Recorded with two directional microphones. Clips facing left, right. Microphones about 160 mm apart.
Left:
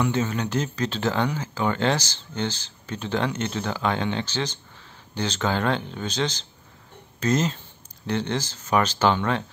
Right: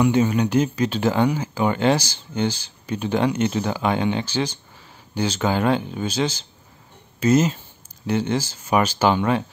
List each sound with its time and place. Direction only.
0.0 s speech: 15° right (ahead or behind)